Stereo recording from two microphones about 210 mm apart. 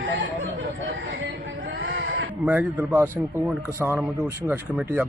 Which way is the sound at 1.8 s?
60° right (ahead or behind).